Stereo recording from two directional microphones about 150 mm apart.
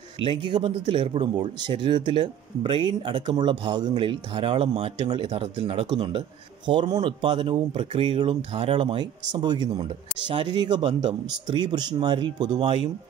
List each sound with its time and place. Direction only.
0.2 s speech: 35° right (ahead or behind)